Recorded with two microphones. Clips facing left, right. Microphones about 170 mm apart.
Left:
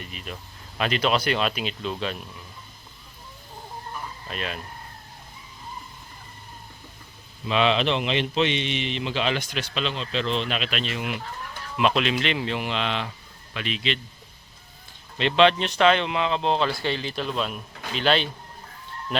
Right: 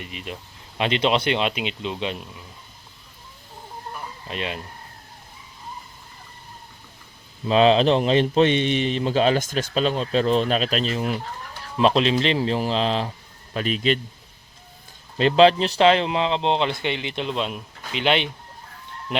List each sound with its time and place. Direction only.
0.0 s a man's voice: 20° right (ahead or behind)
4.3 s a man's voice: 25° right (ahead or behind)
7.4 s speech: 35° right (ahead or behind)
15.2 s a man's voice: 35° right (ahead or behind); by 18.3 s 20° right (ahead or behind)